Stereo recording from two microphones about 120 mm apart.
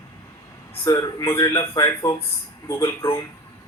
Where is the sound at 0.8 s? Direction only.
25° left (ahead or behind).